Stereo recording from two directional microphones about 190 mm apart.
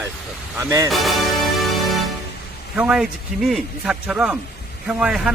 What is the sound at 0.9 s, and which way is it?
Music, centre (ahead or behind).